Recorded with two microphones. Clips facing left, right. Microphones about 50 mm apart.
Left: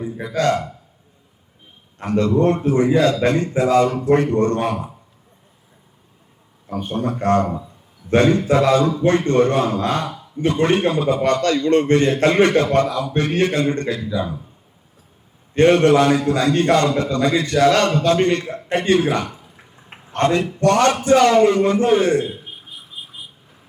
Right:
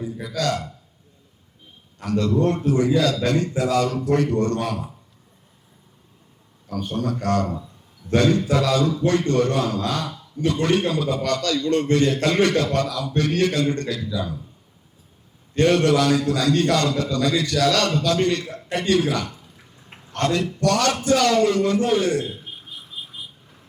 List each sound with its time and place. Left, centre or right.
0.0 s speech: left
2.0 s a man's voice: left
6.7 s a man's voice: left
15.5 s a man's voice: left
22.2 s a sound: centre